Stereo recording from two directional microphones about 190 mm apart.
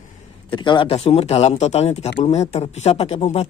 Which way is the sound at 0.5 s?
25° left (ahead or behind).